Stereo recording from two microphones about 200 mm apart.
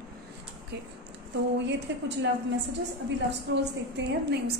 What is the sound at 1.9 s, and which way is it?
Speech, 65° right (ahead or behind).